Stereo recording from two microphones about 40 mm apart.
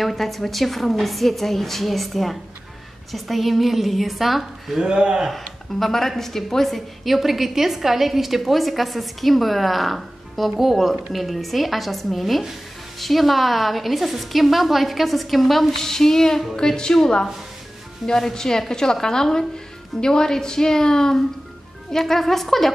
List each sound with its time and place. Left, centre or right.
0.0 s a woman's voice: centre
4.8 s speech: right
5.8 s a woman's voice: centre